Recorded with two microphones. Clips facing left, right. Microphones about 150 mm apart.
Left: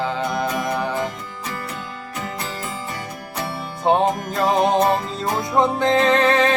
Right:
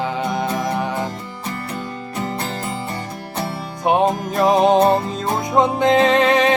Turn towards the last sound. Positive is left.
turn(degrees=-20)  # may be behind; listen again after turning